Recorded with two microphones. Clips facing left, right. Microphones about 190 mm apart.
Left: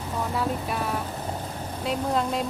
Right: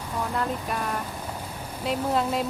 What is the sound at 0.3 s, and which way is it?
Speech, 5° left (ahead or behind).